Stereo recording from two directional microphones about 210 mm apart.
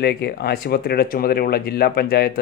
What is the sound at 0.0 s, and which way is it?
Speech, 50° left (ahead or behind).